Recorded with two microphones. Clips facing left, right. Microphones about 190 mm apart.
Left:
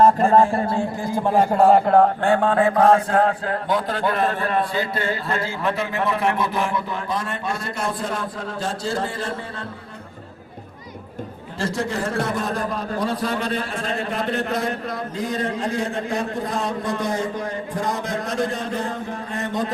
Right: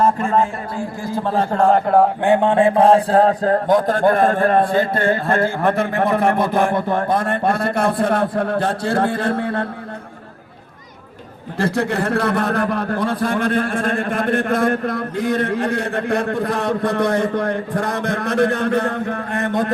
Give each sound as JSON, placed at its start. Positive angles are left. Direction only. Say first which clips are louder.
{"t": 0.2, "sound": "speech", "louder": "left 3 dB", "side_deg": 35}
{"t": 1.0, "sound": "a man's voice", "louder": "even", "side_deg": 15}
{"t": 2.2, "sound": "a man's voice", "louder": "right 4 dB", "side_deg": -20}
{"t": 11.6, "sound": "a man's voice", "louder": "right 5 dB", "side_deg": -60}